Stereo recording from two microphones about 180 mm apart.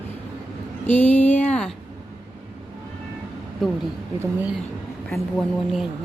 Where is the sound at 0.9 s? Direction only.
10° left (ahead or behind).